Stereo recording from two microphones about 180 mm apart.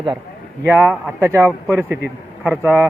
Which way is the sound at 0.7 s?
15° right (ahead or behind).